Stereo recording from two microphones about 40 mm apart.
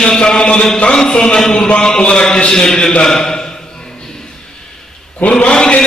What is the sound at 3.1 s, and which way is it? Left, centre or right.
Speech, centre.